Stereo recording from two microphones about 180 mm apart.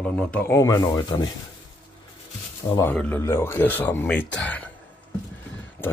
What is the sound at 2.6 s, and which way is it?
Speech, 20° left (ahead or behind).